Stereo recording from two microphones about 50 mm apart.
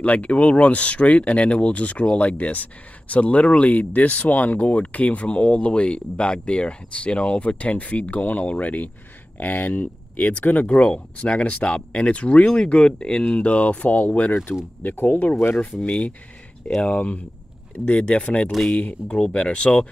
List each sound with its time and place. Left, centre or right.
0.0 s speech: left
10.7 s speech: left